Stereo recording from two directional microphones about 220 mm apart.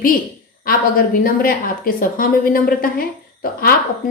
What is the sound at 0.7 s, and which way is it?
A woman's voice, 40° left (ahead or behind).